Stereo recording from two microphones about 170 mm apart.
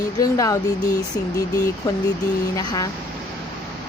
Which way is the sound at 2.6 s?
20° left (ahead or behind).